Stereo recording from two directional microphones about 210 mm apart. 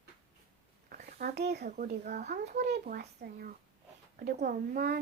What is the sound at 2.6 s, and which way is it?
A child's voice, 45° right (ahead or behind).